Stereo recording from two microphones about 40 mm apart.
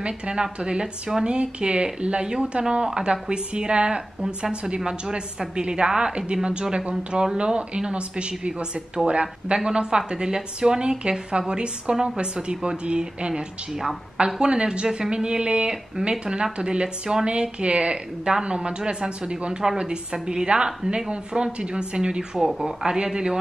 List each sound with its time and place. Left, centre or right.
0.0 s speech: right
13.3 s speech: centre
14.1 s speech: right